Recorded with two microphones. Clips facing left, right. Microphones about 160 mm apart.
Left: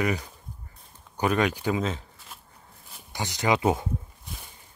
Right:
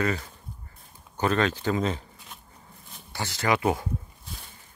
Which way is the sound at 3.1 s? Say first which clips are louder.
Left 1 dB; 20° left (ahead or behind).